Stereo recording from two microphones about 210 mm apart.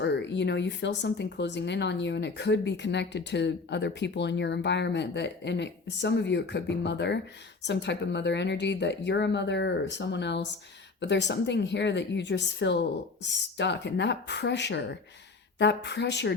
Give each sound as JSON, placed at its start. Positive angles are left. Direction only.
{"t": 0.0, "sound": "speech", "side_deg": 55}